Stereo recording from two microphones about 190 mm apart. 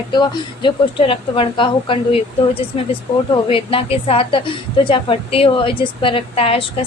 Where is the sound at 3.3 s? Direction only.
30° left (ahead or behind).